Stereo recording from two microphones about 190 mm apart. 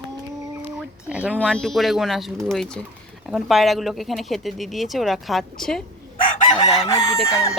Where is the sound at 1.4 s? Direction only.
5° left (ahead or behind).